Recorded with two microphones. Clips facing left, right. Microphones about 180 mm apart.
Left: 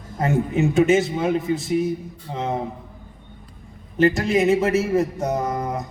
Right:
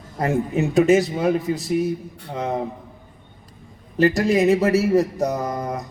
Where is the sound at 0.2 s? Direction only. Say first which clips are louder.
Left 1 dB; 35° right (ahead or behind).